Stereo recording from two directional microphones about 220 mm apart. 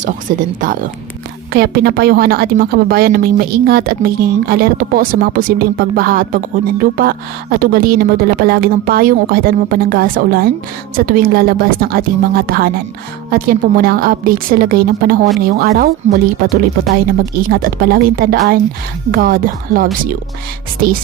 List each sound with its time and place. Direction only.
0.3 s a woman's voice: 40° right (ahead or behind)
17.3 s a woman's voice: 40° right (ahead or behind)